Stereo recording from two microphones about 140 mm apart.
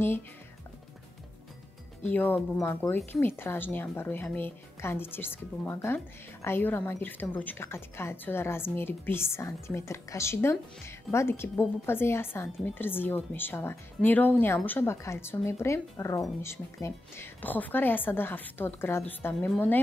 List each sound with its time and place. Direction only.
2.0 s a woman's voice: 15° left (ahead or behind)